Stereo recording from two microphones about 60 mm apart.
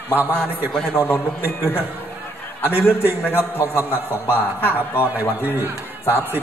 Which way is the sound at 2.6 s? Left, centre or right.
Right.